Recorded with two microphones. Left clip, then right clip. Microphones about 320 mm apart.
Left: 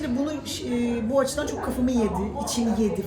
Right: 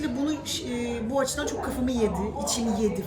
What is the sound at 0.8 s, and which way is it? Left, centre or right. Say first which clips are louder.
Speech: left 5 dB; centre.